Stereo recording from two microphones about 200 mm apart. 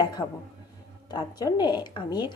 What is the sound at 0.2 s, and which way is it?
Speech, 10° left (ahead or behind).